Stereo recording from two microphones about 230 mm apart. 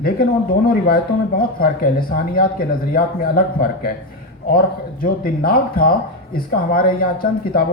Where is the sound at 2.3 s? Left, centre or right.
Left.